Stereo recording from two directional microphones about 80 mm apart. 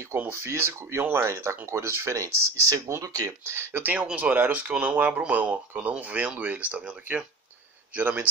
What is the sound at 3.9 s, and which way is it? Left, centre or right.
Speech, centre.